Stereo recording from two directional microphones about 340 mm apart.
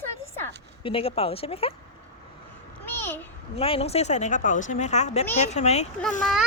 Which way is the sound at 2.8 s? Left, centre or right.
Centre.